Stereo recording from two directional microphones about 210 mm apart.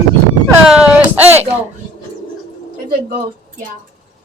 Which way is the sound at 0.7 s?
5° right (ahead or behind).